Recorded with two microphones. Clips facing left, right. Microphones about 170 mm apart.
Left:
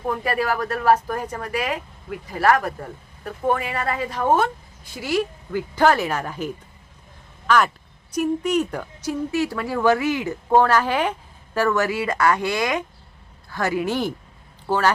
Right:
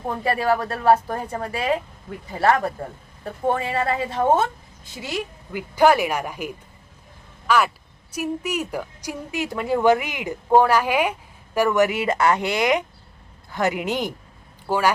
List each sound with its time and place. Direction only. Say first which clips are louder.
0.1 s a woman's voice: right 2 dB; 25° right (ahead or behind); by 14.9 s 10° right (ahead or behind)